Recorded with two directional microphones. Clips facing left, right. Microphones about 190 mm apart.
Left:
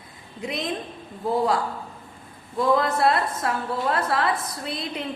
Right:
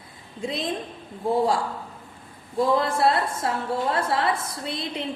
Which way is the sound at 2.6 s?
30° right (ahead or behind).